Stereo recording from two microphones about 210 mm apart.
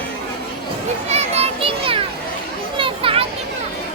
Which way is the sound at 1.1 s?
30° right (ahead or behind).